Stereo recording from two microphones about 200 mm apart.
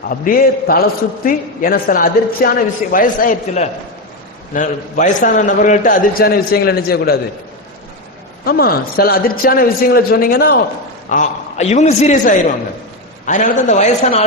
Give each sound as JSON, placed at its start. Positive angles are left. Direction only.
{"t": 0.1, "sound": "a man's voice", "side_deg": 45}
{"t": 8.4, "sound": "a man's voice", "side_deg": 50}
{"t": 11.1, "sound": "a man's voice", "side_deg": 35}